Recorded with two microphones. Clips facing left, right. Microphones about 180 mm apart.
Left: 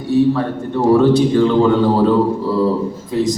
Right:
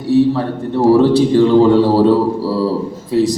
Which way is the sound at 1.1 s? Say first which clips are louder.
Right 3 dB; 35° right (ahead or behind).